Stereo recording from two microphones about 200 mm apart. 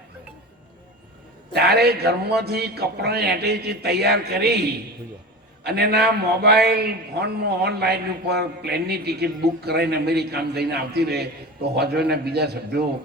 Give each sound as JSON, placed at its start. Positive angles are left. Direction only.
{"t": 1.5, "sound": "a man's voice", "side_deg": -55}